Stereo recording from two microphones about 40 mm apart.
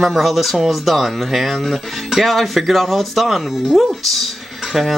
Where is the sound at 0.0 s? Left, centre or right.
Centre.